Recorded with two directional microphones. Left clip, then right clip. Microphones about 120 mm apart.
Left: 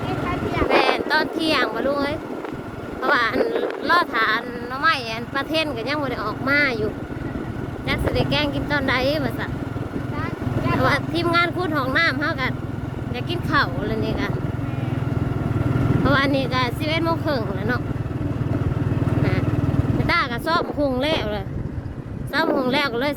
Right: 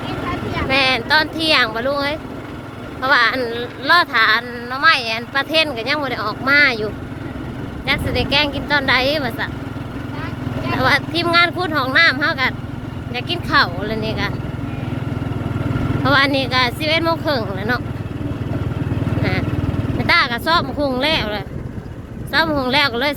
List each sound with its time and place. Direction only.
0.8 s speech: 20° left (ahead or behind)
7.9 s speech: 15° left (ahead or behind)
10.8 s speech: 15° left (ahead or behind)
16.0 s speech: 10° left (ahead or behind)
19.2 s vehicle: 15° left (ahead or behind)
20.1 s speech: 10° left (ahead or behind)